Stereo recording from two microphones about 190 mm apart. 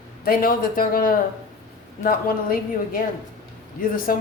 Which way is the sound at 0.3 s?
50° left (ahead or behind).